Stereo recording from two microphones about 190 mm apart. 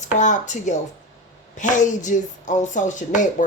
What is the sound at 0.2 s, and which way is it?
Speech, 40° left (ahead or behind).